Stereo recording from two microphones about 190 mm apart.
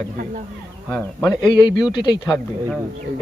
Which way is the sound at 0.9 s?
5° left (ahead or behind).